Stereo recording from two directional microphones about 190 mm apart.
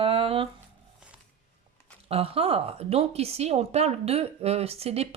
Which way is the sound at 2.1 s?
30° right (ahead or behind).